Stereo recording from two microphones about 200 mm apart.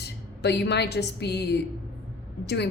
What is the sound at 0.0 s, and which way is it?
A woman's voice, 55° left (ahead or behind).